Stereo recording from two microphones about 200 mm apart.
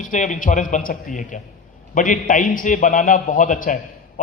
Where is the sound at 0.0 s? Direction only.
40° left (ahead or behind).